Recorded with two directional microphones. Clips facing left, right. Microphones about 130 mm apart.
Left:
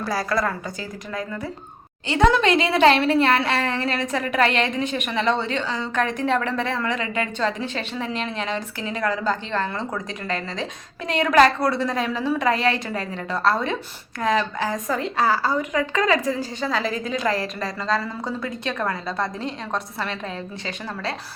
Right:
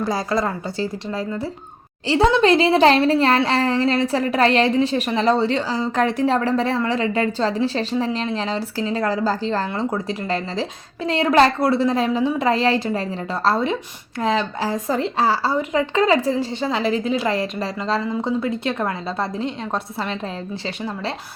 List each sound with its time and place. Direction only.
0.0 s speech: 20° right (ahead or behind)